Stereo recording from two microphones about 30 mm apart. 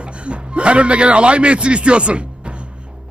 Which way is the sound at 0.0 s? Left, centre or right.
Right.